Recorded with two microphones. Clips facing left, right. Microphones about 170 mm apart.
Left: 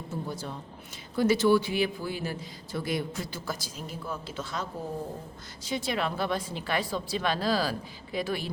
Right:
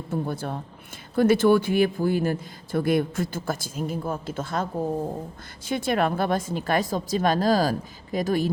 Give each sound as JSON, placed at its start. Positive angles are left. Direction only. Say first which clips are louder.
{"t": 0.1, "sound": "a man's voice", "louder": "right 8 dB", "side_deg": -60}